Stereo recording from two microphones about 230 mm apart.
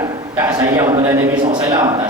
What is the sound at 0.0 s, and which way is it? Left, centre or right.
A man's voice, centre.